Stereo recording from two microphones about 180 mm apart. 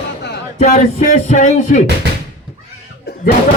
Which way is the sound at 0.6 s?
40° left (ahead or behind).